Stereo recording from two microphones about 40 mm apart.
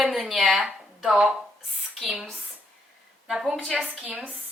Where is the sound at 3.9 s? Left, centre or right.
Right.